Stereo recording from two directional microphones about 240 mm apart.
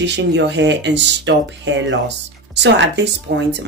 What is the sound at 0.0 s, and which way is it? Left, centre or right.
Speech, right.